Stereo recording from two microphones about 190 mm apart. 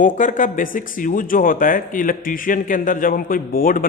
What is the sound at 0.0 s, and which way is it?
Speech, 40° left (ahead or behind).